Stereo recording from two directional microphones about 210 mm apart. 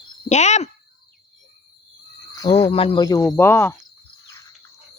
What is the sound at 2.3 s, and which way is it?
Cricket, 15° left (ahead or behind).